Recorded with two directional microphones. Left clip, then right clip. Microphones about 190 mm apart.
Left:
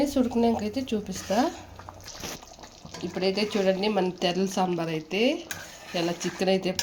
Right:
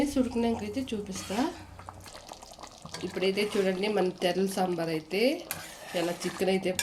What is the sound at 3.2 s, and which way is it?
A woman's voice, 35° left (ahead or behind).